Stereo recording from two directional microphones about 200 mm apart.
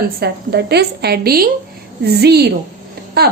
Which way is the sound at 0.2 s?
55° right (ahead or behind).